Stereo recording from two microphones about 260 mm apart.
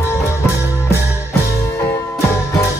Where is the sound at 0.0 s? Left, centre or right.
Centre.